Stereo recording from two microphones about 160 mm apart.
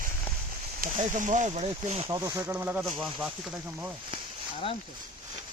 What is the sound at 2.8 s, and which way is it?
Speech, centre (ahead or behind).